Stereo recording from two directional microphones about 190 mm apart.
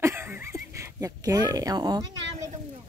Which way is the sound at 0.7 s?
15° right (ahead or behind).